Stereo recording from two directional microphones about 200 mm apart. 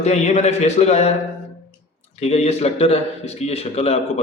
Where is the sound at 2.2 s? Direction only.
30° left (ahead or behind).